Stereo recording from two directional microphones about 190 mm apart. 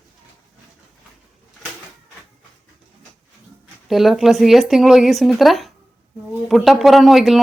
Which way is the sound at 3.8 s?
Centre (ahead or behind).